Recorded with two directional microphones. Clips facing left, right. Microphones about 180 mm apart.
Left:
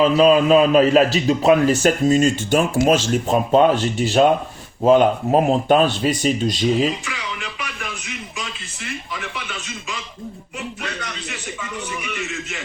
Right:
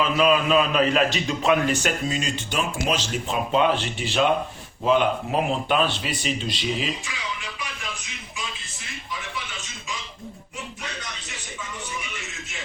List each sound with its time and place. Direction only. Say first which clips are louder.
0.0 s a man's voice: left 7 dB; 35° left (ahead or behind)
7.0 s music: left 4 dB; 65° left (ahead or behind)
11.0 s speech: left 8 dB; 70° left (ahead or behind)